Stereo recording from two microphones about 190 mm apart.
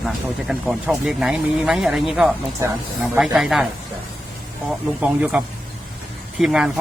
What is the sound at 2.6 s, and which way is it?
Speech, 15° right (ahead or behind).